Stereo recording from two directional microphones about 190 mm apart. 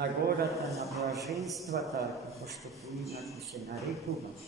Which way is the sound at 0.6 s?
Centre (ahead or behind).